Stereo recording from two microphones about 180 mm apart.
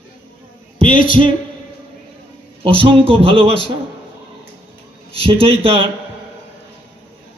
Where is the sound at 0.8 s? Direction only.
30° right (ahead or behind).